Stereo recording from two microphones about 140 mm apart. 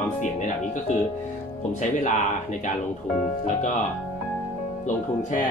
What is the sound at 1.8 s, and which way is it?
Speech, 60° left (ahead or behind).